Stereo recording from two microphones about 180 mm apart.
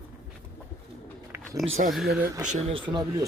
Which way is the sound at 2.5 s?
30° right (ahead or behind).